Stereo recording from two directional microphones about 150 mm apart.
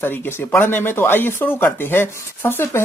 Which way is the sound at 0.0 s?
15° left (ahead or behind).